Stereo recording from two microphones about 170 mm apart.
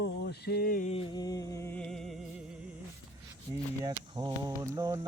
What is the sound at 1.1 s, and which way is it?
Music, 20° left (ahead or behind).